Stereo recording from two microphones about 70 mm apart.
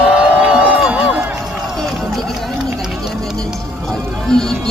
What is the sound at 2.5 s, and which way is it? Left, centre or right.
Run, centre.